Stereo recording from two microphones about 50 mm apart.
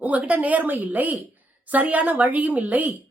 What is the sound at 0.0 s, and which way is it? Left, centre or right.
A woman's voice, right.